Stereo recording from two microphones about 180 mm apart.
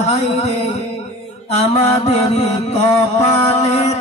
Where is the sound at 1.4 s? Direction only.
35° left (ahead or behind).